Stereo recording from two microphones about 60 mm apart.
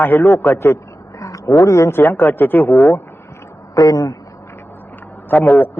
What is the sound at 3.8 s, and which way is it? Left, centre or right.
Speech, left.